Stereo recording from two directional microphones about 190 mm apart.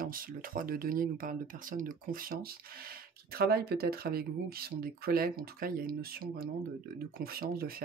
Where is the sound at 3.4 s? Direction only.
55° right (ahead or behind).